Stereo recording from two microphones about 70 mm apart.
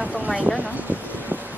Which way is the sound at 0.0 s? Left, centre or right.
Centre.